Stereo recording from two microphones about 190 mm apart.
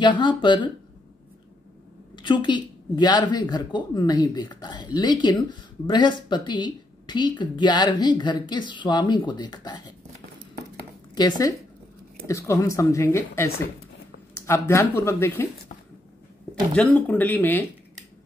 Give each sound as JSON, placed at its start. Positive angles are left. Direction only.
{"t": 0.0, "sound": "speech", "side_deg": 25}
{"t": 2.1, "sound": "speech", "side_deg": 25}
{"t": 11.1, "sound": "speech", "side_deg": 20}
{"t": 16.7, "sound": "speech", "side_deg": 5}